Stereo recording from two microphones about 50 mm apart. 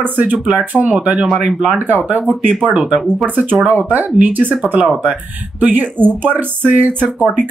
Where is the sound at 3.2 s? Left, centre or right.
Right.